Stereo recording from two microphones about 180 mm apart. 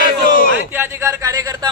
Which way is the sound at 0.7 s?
15° right (ahead or behind).